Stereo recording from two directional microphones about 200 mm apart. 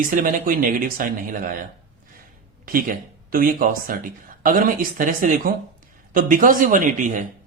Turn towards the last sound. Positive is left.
turn(degrees=-40)  # may be behind; listen again after turning